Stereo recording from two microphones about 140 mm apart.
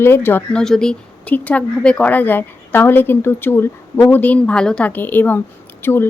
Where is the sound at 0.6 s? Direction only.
5° left (ahead or behind).